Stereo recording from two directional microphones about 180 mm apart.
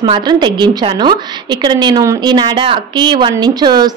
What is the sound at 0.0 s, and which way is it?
A woman's voice, 25° right (ahead or behind).